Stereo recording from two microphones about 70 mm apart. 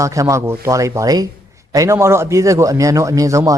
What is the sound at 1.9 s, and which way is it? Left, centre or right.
Speech, right.